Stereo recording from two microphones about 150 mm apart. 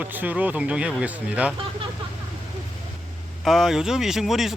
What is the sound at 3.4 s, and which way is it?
Speech, centre (ahead or behind).